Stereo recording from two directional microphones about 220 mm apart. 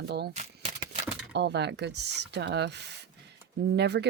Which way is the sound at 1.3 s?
50° right (ahead or behind).